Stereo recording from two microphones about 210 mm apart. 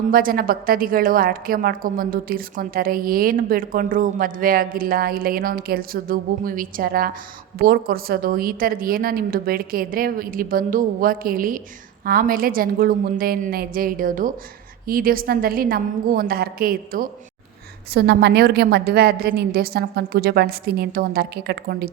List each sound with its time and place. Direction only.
0.1 s a woman's voice: 45° right (ahead or behind)